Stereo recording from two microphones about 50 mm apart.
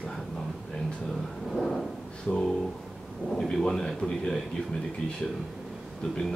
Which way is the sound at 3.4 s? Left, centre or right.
Centre.